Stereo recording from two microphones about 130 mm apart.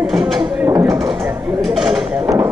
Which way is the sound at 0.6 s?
20° right (ahead or behind).